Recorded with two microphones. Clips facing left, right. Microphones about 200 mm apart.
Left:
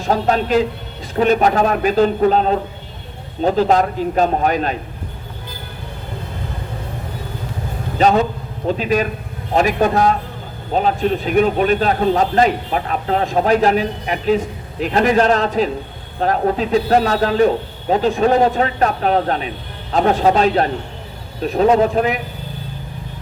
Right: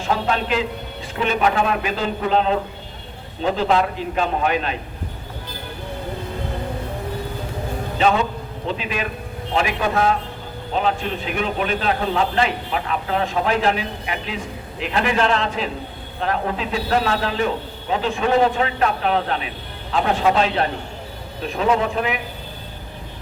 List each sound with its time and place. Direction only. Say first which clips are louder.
0.0 s a man's voice: left 5 dB; 40° left (ahead or behind)
7.9 s a man's voice: left 5 dB; 40° left (ahead or behind)